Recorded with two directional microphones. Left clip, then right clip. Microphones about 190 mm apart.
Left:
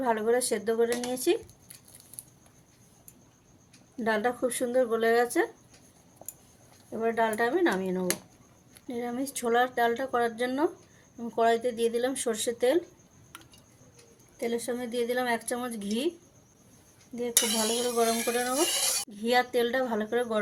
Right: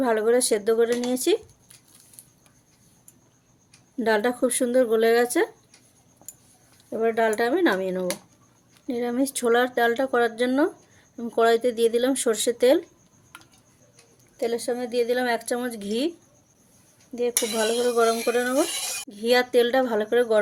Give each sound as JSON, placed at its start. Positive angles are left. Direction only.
{"t": 0.0, "sound": "speech", "side_deg": -60}
{"t": 4.0, "sound": "speech", "side_deg": -60}
{"t": 6.9, "sound": "speech", "side_deg": -60}
{"t": 14.3, "sound": "a woman's voice", "side_deg": -45}
{"t": 17.2, "sound": "speech", "side_deg": -60}